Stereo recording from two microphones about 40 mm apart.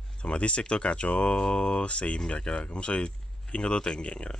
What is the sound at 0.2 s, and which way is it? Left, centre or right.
Speech, left.